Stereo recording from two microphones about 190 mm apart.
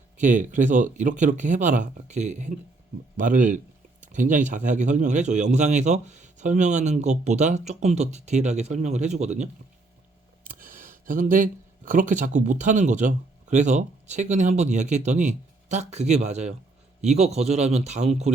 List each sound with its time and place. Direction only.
0.2 s speech: 40° right (ahead or behind)